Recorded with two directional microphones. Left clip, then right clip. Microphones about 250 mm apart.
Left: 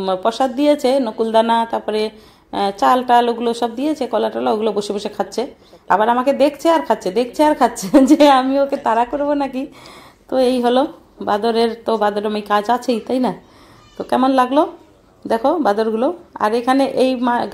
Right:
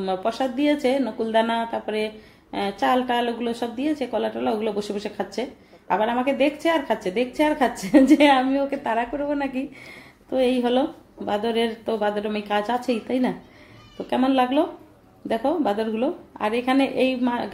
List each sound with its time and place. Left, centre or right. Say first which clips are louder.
0.0 s speech: left 7 dB; left